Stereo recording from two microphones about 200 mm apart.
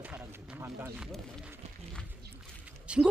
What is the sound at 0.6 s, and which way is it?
Speech, 10° right (ahead or behind).